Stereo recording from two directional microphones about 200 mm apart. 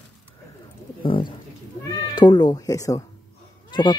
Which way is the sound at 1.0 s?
25° left (ahead or behind).